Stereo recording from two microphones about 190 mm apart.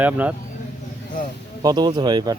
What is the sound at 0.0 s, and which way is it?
Speech, 10° right (ahead or behind).